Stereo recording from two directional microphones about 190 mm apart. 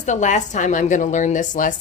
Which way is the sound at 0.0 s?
40° left (ahead or behind).